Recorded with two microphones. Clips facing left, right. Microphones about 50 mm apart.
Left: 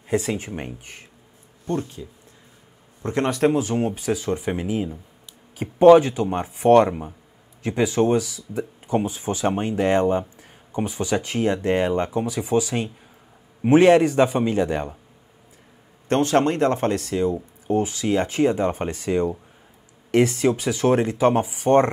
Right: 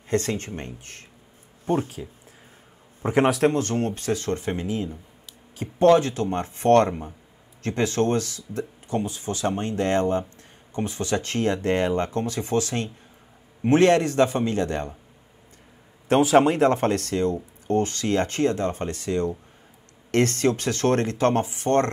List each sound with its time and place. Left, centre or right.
0.1 s speech: centre
2.0 s a man's voice: right
3.3 s speech: centre
16.1 s speech: centre